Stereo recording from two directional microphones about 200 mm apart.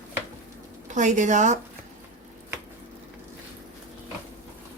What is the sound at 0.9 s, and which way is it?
Speech, 40° right (ahead or behind).